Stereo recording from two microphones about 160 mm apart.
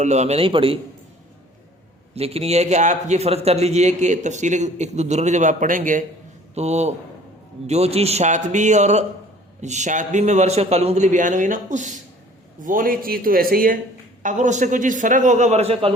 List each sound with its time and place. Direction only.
0.0 s a man's voice: 45° right (ahead or behind)
2.1 s a man's voice: 40° right (ahead or behind); by 6.1 s 55° right (ahead or behind)
6.5 s a man's voice: 45° right (ahead or behind)
12.6 s a man's voice: 60° right (ahead or behind)
14.2 s a man's voice: 50° right (ahead or behind)